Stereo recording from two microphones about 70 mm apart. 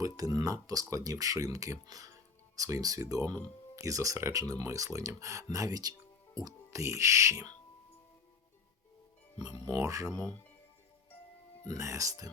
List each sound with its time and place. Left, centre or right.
0.0 s speech: right
6.7 s speech: right
9.4 s speech: right
11.7 s speech: right